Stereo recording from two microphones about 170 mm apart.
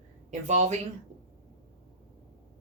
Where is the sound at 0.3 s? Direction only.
45° right (ahead or behind).